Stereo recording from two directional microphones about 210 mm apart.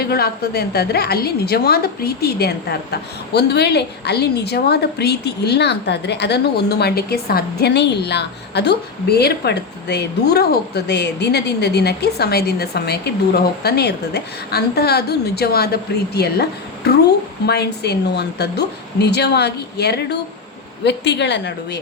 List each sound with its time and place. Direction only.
0.1 s a woman's voice: 50° left (ahead or behind)